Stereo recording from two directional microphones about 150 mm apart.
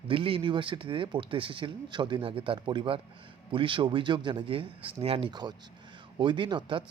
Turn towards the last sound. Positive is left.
turn(degrees=-30)  # may be behind; listen again after turning